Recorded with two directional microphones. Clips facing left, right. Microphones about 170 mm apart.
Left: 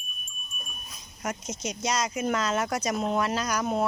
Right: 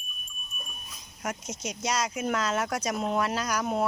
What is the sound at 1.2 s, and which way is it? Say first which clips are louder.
Speech: left 2 dB; 5° right (ahead or behind).